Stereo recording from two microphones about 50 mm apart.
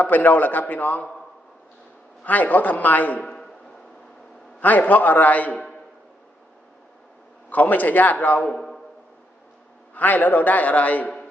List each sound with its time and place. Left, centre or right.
0.0 s a man's voice: left
2.2 s a man's voice: left
3.2 s a sound: centre
4.6 s a man's voice: left
7.5 s a man's voice: left
9.9 s a man's voice: left